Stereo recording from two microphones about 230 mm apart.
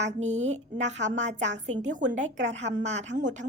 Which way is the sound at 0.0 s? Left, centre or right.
Right.